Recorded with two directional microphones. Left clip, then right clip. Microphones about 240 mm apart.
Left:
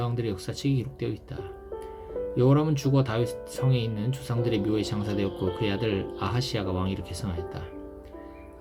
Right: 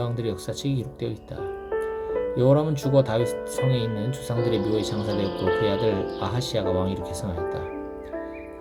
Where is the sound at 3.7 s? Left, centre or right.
Right.